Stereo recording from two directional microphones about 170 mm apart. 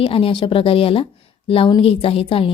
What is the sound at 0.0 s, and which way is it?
A woman's voice, 35° left (ahead or behind).